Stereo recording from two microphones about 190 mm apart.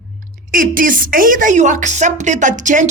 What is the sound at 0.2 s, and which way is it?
A woman's voice, 45° right (ahead or behind).